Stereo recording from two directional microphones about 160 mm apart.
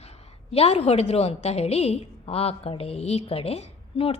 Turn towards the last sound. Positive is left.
turn(degrees=40)  # may be behind; listen again after turning